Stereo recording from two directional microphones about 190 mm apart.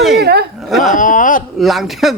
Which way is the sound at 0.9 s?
45° left (ahead or behind).